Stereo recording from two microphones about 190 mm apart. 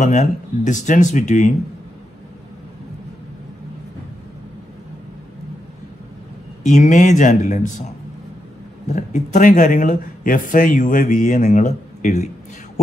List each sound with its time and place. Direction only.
0.0 s speech: 40° left (ahead or behind)
6.6 s speech: 40° left (ahead or behind)
8.8 s speech: 40° left (ahead or behind)